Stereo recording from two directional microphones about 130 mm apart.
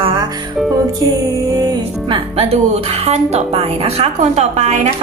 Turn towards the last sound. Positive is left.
turn(degrees=-60)  # may be behind; listen again after turning